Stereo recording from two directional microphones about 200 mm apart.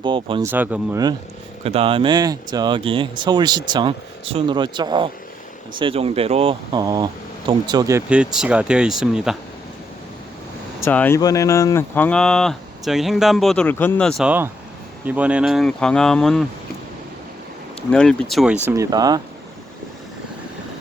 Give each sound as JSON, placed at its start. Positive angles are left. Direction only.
{"t": 0.0, "sound": "speech", "side_deg": -25}
{"t": 0.4, "sound": "speech", "side_deg": -10}
{"t": 1.6, "sound": "speech", "side_deg": -30}
{"t": 10.8, "sound": "speech", "side_deg": 10}
{"t": 17.9, "sound": "speech", "side_deg": 5}
{"t": 18.6, "sound": "speech", "side_deg": -15}